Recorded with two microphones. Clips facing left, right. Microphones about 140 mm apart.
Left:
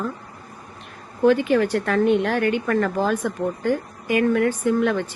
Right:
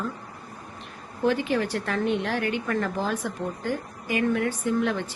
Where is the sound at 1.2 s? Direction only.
55° left (ahead or behind).